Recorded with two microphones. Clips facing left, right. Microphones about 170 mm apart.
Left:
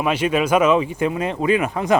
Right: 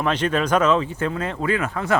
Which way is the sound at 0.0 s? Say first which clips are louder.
Left 2 dB; 10° left (ahead or behind).